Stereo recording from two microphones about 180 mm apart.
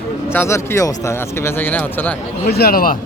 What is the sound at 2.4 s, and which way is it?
Speech, 65° left (ahead or behind).